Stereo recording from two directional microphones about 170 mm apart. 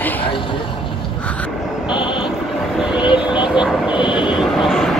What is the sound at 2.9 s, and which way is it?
Vehicle, 30° left (ahead or behind).